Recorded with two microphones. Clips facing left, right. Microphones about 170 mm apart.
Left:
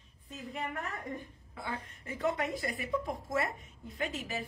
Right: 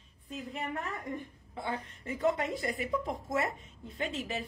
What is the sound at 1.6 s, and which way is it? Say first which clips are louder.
A woman's voice: right 4 dB; 30° right (ahead or behind).